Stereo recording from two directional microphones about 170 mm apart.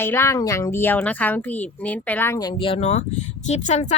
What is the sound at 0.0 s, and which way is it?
A woman's voice, 15° left (ahead or behind).